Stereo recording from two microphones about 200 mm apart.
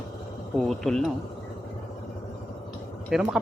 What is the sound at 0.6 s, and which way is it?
Speech, centre (ahead or behind).